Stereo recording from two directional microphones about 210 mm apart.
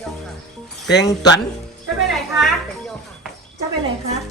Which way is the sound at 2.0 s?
Centre (ahead or behind).